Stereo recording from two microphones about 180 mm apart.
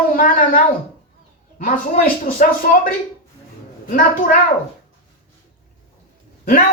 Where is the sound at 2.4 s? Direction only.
45° left (ahead or behind).